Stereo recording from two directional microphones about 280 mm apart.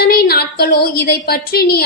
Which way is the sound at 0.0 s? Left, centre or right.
Left.